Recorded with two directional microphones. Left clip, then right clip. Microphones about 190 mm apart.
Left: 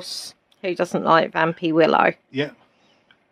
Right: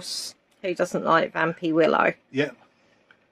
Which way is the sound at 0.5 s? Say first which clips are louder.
Left 2 dB; 35° left (ahead or behind).